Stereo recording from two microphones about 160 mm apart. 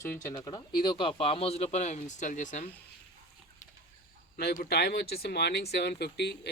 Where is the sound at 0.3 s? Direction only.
25° left (ahead or behind); by 2.6 s 50° left (ahead or behind).